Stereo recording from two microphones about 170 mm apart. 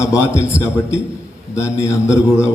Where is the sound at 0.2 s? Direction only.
15° left (ahead or behind).